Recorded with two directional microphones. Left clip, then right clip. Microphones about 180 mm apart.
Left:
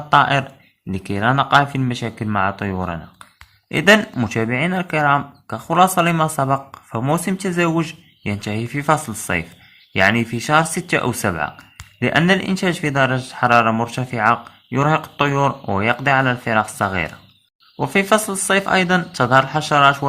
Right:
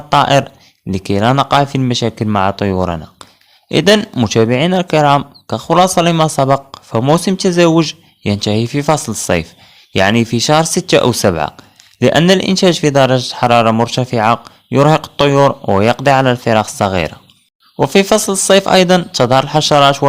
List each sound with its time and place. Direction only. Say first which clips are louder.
0.1 s speech: right 4 dB; 50° right (ahead or behind)